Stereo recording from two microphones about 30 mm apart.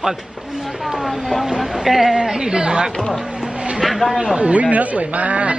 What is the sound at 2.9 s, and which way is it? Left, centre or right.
Speech, left.